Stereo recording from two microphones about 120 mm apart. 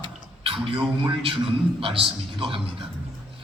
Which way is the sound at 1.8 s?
50° right (ahead or behind).